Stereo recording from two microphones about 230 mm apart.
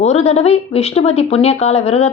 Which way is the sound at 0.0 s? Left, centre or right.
Left.